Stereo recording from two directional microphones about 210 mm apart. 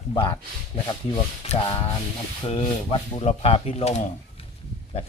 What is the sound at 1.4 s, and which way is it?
A man's voice, 30° left (ahead or behind).